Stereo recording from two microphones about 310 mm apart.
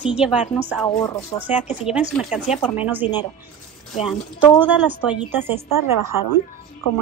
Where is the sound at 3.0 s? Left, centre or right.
Centre.